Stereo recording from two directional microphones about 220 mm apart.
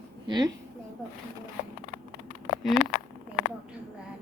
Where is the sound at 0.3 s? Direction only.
20° right (ahead or behind).